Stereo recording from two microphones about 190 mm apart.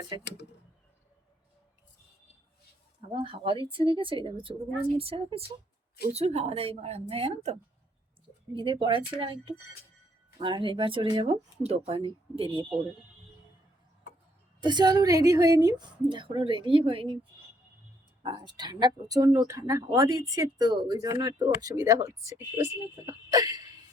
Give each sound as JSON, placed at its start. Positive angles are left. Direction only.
{"t": 3.2, "sound": "a woman's voice", "side_deg": -25}
{"t": 14.6, "sound": "speech", "side_deg": -20}
{"t": 18.2, "sound": "speech", "side_deg": -20}